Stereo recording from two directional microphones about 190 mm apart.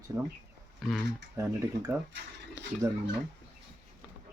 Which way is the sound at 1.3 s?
15° right (ahead or behind).